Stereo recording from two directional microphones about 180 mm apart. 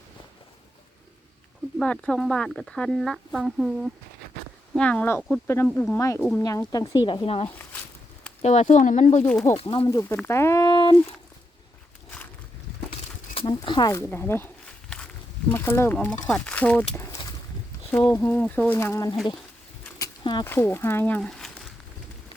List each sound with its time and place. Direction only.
1.8 s speech: 5° left (ahead or behind); by 9.0 s 45° left (ahead or behind)
9.2 s speech: 10° left (ahead or behind)
9.5 s speech: 30° left (ahead or behind)
9.8 s speech: 15° left (ahead or behind)
13.4 s speech: 25° left (ahead or behind); by 16.8 s 10° left (ahead or behind)
16.9 s a sound: 15° left (ahead or behind)
17.9 s speech: 10° left (ahead or behind)
20.0 s a sound: 20° left (ahead or behind)
20.5 s speech: 15° left (ahead or behind)